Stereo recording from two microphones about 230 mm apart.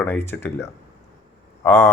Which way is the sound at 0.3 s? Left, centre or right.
Centre.